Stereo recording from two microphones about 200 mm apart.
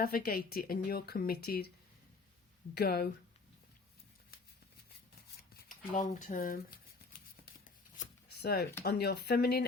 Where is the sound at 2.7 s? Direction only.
50° left (ahead or behind).